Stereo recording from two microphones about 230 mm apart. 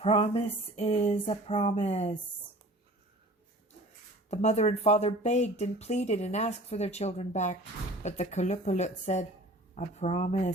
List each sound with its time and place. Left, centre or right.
0.0 s speech: left
4.3 s speech: left